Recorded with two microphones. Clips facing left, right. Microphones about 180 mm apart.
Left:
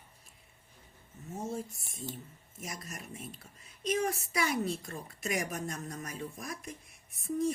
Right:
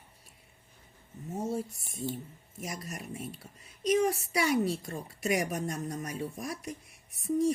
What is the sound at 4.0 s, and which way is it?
A woman's voice, 30° right (ahead or behind).